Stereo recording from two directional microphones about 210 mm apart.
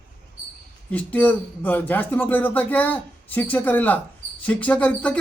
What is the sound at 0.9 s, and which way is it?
Speech, 5° left (ahead or behind).